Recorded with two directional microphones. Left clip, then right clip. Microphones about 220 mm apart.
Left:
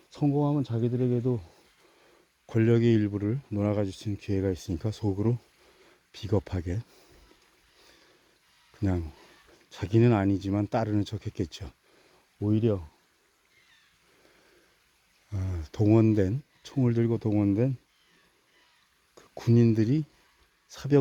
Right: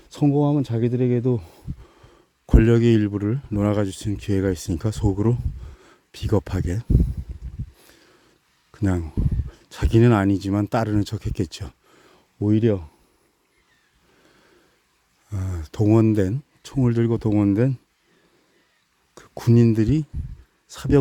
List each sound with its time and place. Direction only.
0.1 s speech: 35° right (ahead or behind)
2.5 s speech: 25° right (ahead or behind)
7.8 s a sound: 25° right (ahead or behind)
8.7 s speech: 25° right (ahead or behind)
12.4 s speech: 35° right (ahead or behind)
15.3 s speech: 20° right (ahead or behind)
19.1 s speech: 30° right (ahead or behind)